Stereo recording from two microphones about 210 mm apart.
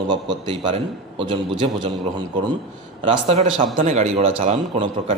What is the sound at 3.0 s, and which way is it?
A man's voice, 25° right (ahead or behind).